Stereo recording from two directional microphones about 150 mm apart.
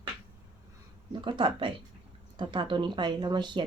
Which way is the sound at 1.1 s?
35° right (ahead or behind).